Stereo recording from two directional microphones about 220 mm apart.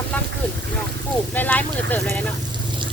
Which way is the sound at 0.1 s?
5° left (ahead or behind).